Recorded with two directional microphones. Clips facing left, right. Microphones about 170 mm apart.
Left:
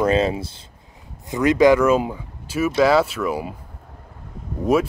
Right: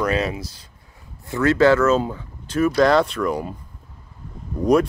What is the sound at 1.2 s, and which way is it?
Speech, 15° left (ahead or behind).